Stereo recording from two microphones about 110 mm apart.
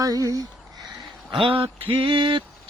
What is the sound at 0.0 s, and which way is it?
Speech, 30° right (ahead or behind).